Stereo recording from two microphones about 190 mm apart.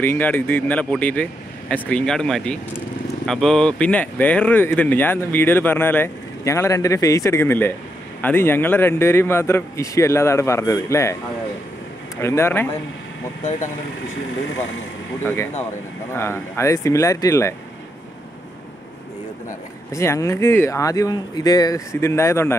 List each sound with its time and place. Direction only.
0.0 s speech: 10° left (ahead or behind)
12.2 s speech: 15° left (ahead or behind)
13.4 s speech: 40° left (ahead or behind)
16.1 s speech: 15° left (ahead or behind)
19.9 s speech: 15° left (ahead or behind)